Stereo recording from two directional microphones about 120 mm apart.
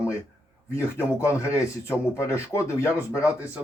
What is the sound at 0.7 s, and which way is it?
Speech, 25° left (ahead or behind).